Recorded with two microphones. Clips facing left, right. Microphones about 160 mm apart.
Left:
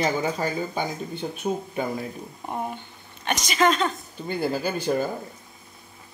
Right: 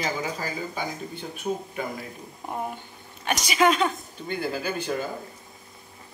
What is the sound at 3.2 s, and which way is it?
Speech, 10° right (ahead or behind).